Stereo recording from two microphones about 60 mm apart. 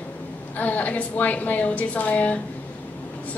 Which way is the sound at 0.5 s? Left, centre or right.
Left.